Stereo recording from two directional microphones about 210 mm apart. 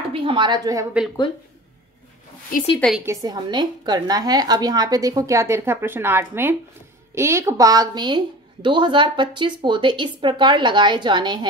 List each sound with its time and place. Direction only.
0.1 s a woman's voice: 25° right (ahead or behind)
2.5 s a woman's voice: 40° left (ahead or behind)
3.1 s a woman's voice: 20° right (ahead or behind)